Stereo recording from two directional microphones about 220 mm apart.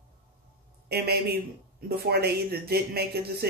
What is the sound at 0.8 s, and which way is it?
A man's voice, 45° right (ahead or behind).